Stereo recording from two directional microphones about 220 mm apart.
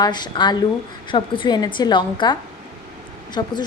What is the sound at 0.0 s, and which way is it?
A woman's voice, 20° left (ahead or behind).